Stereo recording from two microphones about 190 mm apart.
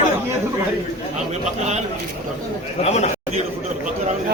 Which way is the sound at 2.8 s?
35° left (ahead or behind).